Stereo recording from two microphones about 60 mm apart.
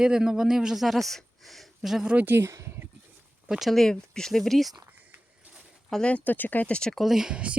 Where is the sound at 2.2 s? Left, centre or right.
Right.